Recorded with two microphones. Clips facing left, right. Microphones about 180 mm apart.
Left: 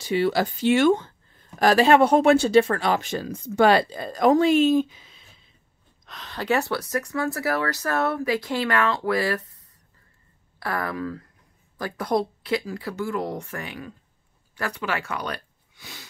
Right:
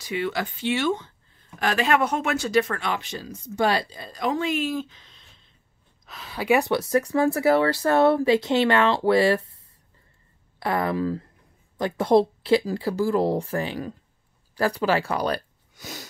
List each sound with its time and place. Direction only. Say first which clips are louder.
0.0 s speech: left 5 dB; 35° left (ahead or behind); by 1.1 s 50° left (ahead or behind)
1.6 s speech: left 6 dB; 35° left (ahead or behind)
4.7 s a sound: left 8 dB; 10° left (ahead or behind)
6.0 s speech: right 3 dB; 5° right (ahead or behind); by 9.6 s 25° right (ahead or behind)
10.6 s speech: right 4 dB; 20° right (ahead or behind); by 16.1 s 40° right (ahead or behind)